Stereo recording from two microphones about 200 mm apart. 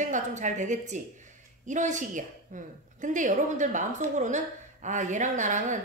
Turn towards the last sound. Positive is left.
turn(degrees=-35)  # may be behind; listen again after turning